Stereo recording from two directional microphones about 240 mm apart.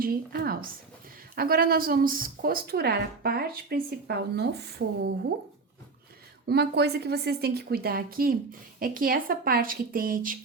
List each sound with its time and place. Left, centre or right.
0.0 s a woman's voice: right
6.5 s a woman's voice: right